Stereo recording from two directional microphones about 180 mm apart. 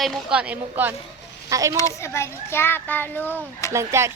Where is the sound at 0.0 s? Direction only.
5° right (ahead or behind).